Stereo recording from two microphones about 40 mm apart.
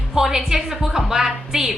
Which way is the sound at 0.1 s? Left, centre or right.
Centre.